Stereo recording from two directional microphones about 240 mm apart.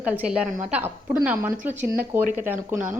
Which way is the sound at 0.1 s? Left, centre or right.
Centre.